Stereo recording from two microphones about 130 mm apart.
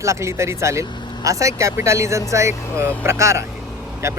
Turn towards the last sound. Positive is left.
turn(degrees=-20)  # may be behind; listen again after turning